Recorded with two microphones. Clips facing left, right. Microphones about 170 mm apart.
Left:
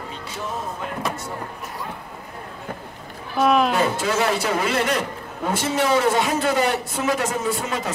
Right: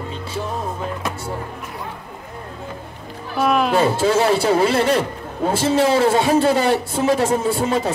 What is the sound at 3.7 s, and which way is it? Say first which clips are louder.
A man's voice: right 5 dB; 30° right (ahead or behind).